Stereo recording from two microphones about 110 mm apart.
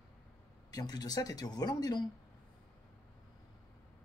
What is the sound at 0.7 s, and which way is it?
Speech, 35° left (ahead or behind).